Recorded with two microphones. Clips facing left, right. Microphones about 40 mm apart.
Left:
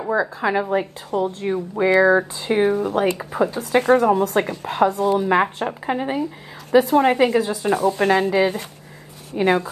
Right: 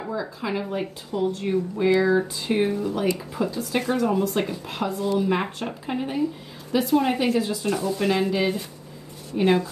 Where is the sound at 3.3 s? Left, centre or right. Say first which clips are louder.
Left 6 dB; left.